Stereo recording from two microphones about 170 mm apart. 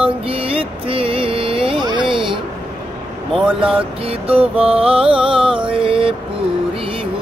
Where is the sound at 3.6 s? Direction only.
30° right (ahead or behind).